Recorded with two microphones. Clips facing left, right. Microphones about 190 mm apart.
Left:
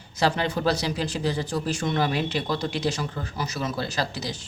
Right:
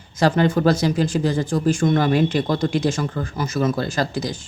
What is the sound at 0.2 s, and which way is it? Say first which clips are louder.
Speech: right 7 dB; 50° right (ahead or behind).